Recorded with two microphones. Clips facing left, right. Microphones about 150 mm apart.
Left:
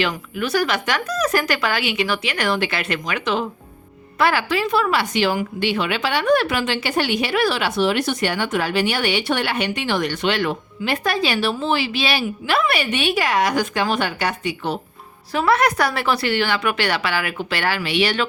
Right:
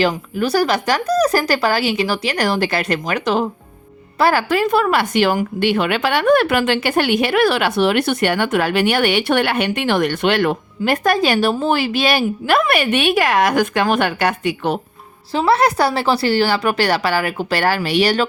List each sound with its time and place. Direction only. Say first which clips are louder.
0.0 s a woman's voice: right 5 dB; 35° right (ahead or behind); by 14.8 s 55° right (ahead or behind)
15.3 s a woman's voice: right 3 dB; 30° right (ahead or behind)